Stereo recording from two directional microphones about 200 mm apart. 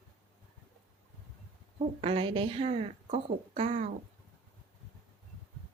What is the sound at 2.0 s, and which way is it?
A woman's voice, 30° right (ahead or behind).